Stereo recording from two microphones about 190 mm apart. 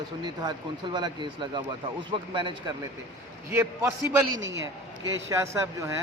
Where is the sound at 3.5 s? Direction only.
15° right (ahead or behind).